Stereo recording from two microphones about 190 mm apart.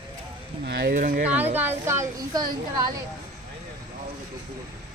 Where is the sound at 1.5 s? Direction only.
10° right (ahead or behind).